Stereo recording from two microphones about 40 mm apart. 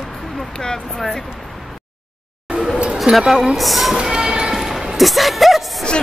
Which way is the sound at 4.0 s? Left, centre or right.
Right.